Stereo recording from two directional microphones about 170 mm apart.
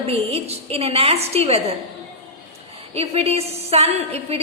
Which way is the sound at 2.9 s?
35° right (ahead or behind).